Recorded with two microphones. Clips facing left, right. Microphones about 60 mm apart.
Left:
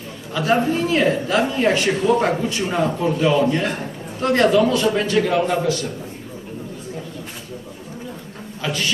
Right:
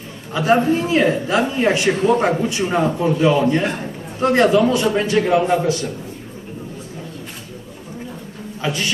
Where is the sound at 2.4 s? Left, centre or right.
Centre.